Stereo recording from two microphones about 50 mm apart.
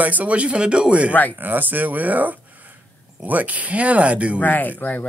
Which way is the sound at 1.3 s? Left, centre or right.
Right.